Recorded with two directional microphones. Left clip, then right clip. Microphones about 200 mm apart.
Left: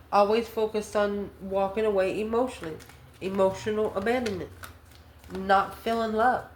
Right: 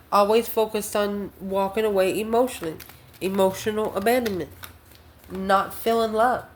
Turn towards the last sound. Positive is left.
turn(degrees=-45)  # may be behind; listen again after turning